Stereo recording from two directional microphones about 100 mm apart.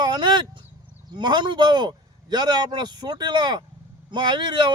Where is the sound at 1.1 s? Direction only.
50° right (ahead or behind).